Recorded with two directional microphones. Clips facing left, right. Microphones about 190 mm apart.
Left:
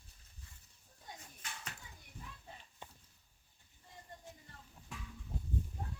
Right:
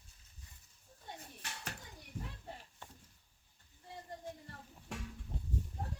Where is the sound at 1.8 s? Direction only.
70° right (ahead or behind).